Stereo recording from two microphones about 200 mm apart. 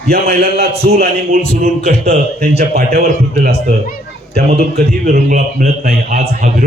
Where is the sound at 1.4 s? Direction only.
35° right (ahead or behind).